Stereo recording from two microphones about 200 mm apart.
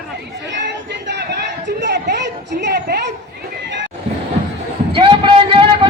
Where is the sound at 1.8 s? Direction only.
60° right (ahead or behind).